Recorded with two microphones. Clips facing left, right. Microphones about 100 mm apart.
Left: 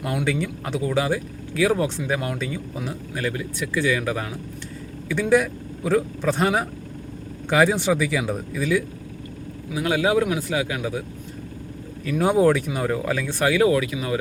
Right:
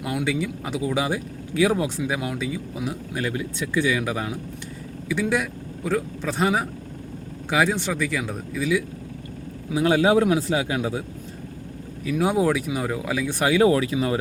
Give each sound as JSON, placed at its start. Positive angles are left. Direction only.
{"t": 0.0, "sound": "speech", "side_deg": -5}
{"t": 3.2, "sound": "speech", "side_deg": -20}
{"t": 5.0, "sound": "speech", "side_deg": 0}
{"t": 9.7, "sound": "speech", "side_deg": -30}
{"t": 12.0, "sound": "speech", "side_deg": -5}